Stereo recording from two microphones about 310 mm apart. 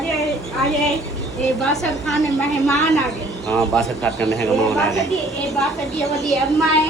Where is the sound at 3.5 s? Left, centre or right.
Centre.